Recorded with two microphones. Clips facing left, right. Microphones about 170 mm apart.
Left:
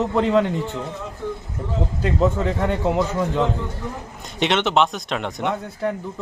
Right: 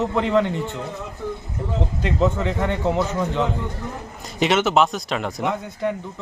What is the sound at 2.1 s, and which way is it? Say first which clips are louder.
Speech: left 1 dB; centre (ahead or behind).